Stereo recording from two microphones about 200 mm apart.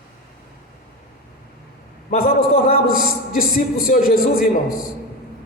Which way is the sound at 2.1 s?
50° left (ahead or behind).